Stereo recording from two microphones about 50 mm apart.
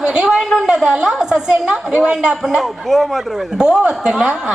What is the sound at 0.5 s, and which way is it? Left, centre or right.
Speech, centre.